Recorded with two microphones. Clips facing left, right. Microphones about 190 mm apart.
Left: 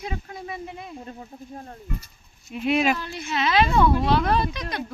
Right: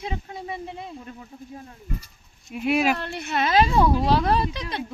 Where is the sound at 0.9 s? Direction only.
35° left (ahead or behind).